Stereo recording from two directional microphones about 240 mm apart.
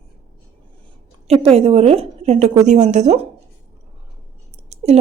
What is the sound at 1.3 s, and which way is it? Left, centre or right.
A woman's voice, right.